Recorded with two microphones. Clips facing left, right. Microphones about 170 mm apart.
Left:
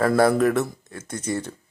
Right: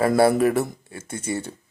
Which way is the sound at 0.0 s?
10° right (ahead or behind).